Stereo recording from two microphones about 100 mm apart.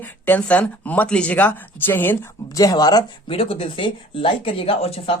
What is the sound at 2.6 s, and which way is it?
Speech, 40° left (ahead or behind).